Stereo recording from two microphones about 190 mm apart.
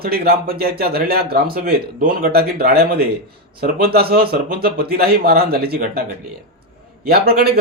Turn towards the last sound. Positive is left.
turn(degrees=-55)  # may be behind; listen again after turning